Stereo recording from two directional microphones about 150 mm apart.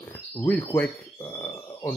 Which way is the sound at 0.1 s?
15° left (ahead or behind).